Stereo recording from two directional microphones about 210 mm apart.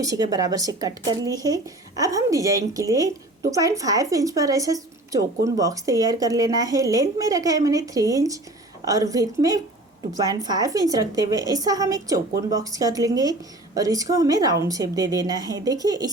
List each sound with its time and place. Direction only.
0.0 s speech: 15° right (ahead or behind)